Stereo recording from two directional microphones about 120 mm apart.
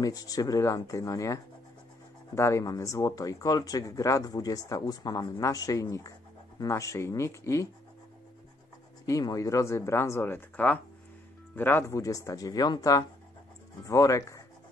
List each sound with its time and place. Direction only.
0.0 s speech: 30° left (ahead or behind)
9.0 s speech: 30° left (ahead or behind)